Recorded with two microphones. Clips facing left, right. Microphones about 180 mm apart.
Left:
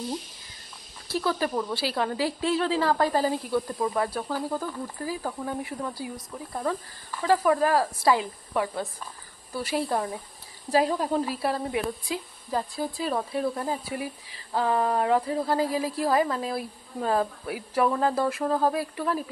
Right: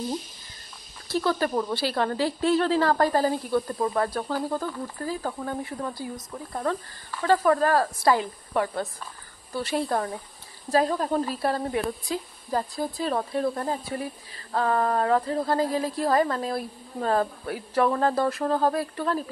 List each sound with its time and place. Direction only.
1.1 s a woman's voice: 5° left (ahead or behind)
9.5 s a woman's voice: 5° left (ahead or behind)